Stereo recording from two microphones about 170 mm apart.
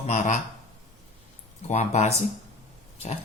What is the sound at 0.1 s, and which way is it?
Speech, 45° left (ahead or behind).